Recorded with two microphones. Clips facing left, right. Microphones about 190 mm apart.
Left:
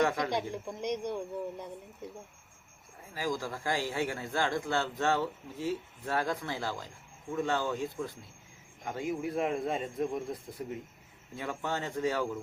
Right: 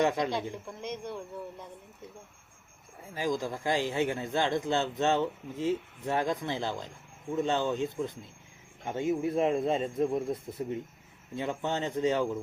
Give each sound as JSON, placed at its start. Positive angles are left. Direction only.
{"t": 0.0, "sound": "a man's voice", "side_deg": -20}
{"t": 0.5, "sound": "speech", "side_deg": 15}
{"t": 3.2, "sound": "a man's voice", "side_deg": -20}